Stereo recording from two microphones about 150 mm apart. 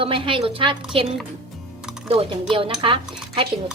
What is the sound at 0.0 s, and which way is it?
Speech, 35° right (ahead or behind).